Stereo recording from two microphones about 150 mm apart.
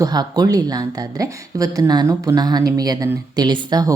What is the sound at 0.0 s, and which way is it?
Speech, 25° right (ahead or behind).